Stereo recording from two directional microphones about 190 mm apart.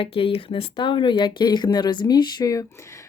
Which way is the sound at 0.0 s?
30° left (ahead or behind).